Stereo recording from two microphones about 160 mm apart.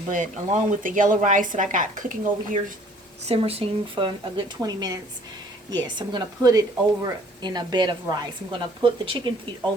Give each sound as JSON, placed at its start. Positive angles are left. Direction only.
{"t": 0.1, "sound": "a woman's voice", "side_deg": -50}
{"t": 3.2, "sound": "a woman's voice", "side_deg": -40}